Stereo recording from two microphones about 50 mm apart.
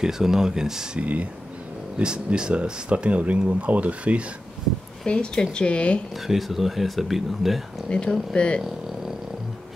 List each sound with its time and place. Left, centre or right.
0.0 s speech: centre
0.9 s speech: right
2.0 s speech: centre
5.0 s speech: centre
6.2 s speech: centre
7.9 s speech: centre